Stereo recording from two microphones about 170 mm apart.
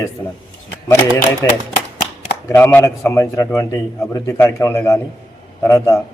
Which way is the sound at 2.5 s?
10° left (ahead or behind).